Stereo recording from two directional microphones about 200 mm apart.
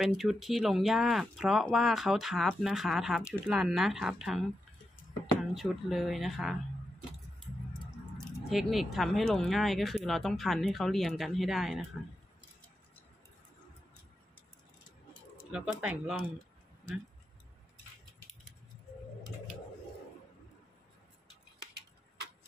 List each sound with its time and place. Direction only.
0.0 s speech: centre (ahead or behind)
8.5 s speech: centre (ahead or behind)
15.5 s speech: 5° right (ahead or behind)